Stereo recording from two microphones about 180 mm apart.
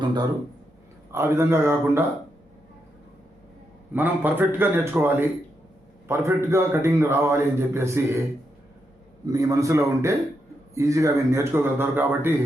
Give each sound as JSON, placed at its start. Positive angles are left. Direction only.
{"t": 0.0, "sound": "speech", "side_deg": -25}
{"t": 1.1, "sound": "a man's voice", "side_deg": -15}
{"t": 3.9, "sound": "a man's voice", "side_deg": -10}
{"t": 9.2, "sound": "a man's voice", "side_deg": -20}